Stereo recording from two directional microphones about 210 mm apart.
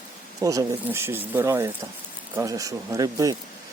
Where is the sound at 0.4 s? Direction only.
15° right (ahead or behind).